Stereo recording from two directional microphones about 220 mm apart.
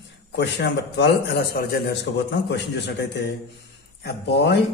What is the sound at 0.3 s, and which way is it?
A man's voice, 50° left (ahead or behind).